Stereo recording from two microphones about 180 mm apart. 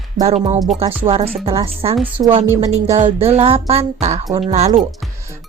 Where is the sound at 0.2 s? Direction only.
35° right (ahead or behind).